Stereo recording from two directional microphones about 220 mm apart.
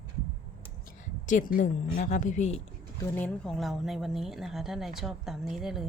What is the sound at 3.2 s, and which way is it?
A woman's voice, 5° left (ahead or behind).